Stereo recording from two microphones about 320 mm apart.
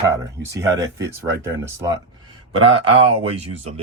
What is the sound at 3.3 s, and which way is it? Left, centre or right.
Speech, centre.